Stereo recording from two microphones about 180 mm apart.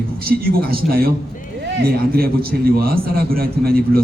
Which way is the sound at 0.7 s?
55° right (ahead or behind).